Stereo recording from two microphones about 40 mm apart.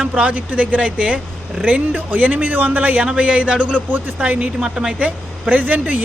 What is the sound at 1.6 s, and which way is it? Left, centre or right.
A woman's voice, right.